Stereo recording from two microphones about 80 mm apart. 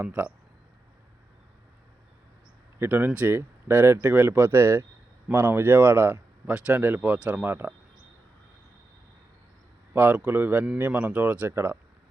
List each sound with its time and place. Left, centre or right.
0.0 s speech: centre
2.7 s speech: right
6.4 s speech: centre
6.7 s speech: right
9.9 s speech: centre